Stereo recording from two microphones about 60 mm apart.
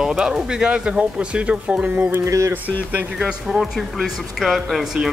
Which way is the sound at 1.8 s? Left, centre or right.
Right.